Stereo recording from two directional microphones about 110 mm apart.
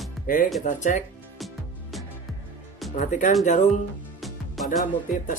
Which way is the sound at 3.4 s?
90° left.